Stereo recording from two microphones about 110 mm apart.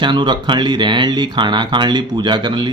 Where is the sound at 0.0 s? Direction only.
45° right (ahead or behind).